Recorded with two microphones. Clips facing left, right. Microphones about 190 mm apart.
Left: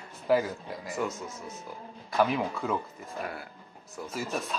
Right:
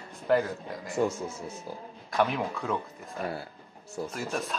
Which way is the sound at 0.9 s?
30° right (ahead or behind).